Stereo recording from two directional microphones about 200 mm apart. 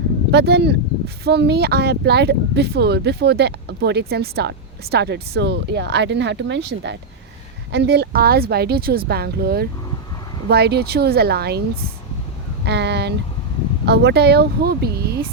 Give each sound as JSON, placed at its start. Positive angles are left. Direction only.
{"t": 0.3, "sound": "speech", "side_deg": -55}
{"t": 12.6, "sound": "speech", "side_deg": -55}